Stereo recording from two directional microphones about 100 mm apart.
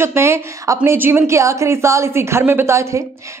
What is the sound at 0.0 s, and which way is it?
A man's voice, 25° right (ahead or behind).